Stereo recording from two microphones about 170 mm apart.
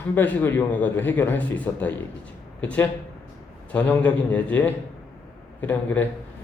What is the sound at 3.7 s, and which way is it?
Speech, 10° left (ahead or behind).